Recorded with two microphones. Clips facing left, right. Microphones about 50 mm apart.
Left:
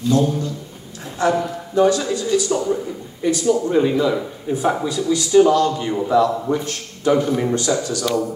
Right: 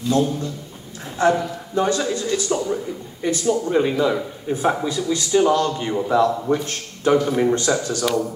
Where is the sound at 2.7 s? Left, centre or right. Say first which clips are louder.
Left 2 dB; centre.